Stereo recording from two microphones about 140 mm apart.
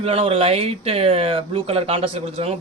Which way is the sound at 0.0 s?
45° right (ahead or behind).